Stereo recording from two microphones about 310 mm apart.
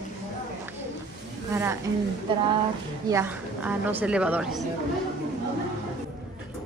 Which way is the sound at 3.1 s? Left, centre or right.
Centre.